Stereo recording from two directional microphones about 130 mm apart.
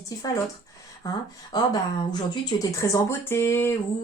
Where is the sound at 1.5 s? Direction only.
30° left (ahead or behind).